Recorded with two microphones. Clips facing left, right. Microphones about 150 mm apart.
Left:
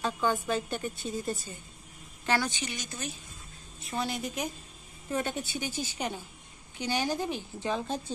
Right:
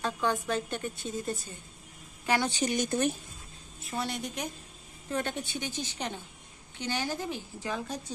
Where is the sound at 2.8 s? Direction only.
55° right (ahead or behind).